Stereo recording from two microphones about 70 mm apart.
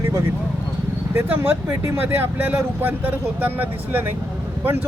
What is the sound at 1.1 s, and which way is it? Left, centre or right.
Speech, right.